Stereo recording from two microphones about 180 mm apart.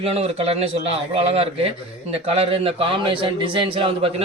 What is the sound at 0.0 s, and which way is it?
A man's voice, 35° right (ahead or behind).